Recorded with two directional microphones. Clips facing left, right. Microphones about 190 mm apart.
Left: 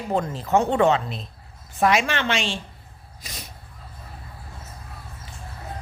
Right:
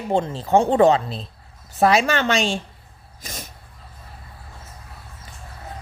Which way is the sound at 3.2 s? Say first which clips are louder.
Right 4 dB; 45° right (ahead or behind).